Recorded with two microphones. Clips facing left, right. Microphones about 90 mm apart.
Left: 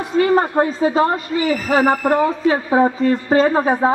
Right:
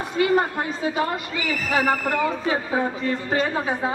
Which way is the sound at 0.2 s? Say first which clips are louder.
Left 6 dB; 35° left (ahead or behind).